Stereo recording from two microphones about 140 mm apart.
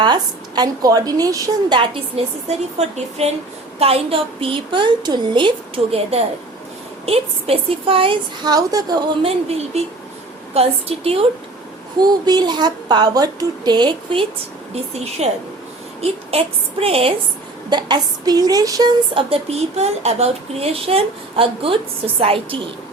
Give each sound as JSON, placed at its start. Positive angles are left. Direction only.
{"t": 0.0, "sound": "a woman's voice", "side_deg": -30}
{"t": 1.8, "sound": "a woman's voice", "side_deg": -40}
{"t": 8.5, "sound": "a woman's voice", "side_deg": -25}
{"t": 9.2, "sound": "speech", "side_deg": -45}
{"t": 11.9, "sound": "a woman's voice", "side_deg": -30}
{"t": 15.2, "sound": "a woman's voice", "side_deg": -50}
{"t": 17.7, "sound": "a woman's voice", "side_deg": -30}
{"t": 19.1, "sound": "a woman's voice", "side_deg": -45}